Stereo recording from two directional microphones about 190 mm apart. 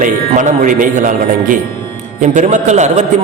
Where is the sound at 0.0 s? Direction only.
45° right (ahead or behind).